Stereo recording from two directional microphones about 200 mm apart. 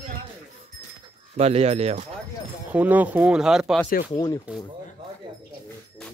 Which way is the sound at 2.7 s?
10° right (ahead or behind).